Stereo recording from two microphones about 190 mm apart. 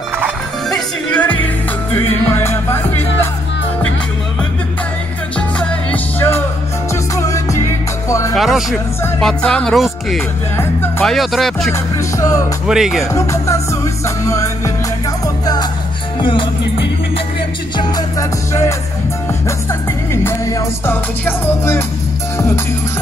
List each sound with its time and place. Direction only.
0.2 s music: centre (ahead or behind)
5.6 s music: 10° left (ahead or behind)
8.4 s speech: centre (ahead or behind)
12.2 s music: 15° left (ahead or behind)
12.6 s speech: 5° right (ahead or behind)
13.1 s music: 15° left (ahead or behind)
18.5 s music: 15° left (ahead or behind)
20.2 s music: 15° left (ahead or behind)